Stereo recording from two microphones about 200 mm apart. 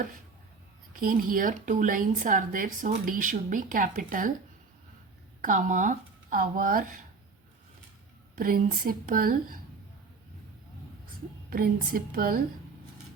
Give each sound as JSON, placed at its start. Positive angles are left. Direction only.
{"t": 0.9, "sound": "speech", "side_deg": -45}
{"t": 5.4, "sound": "speech", "side_deg": -40}
{"t": 8.4, "sound": "speech", "side_deg": -45}
{"t": 11.5, "sound": "speech", "side_deg": -45}